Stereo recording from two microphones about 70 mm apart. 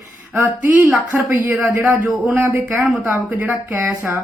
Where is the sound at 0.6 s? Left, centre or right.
Right.